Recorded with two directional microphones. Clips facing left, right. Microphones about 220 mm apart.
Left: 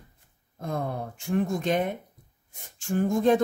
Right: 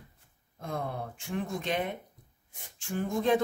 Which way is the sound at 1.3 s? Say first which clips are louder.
Left 7 dB; 45° left (ahead or behind).